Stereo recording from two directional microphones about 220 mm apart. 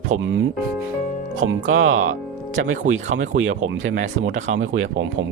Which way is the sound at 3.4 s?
65° right (ahead or behind).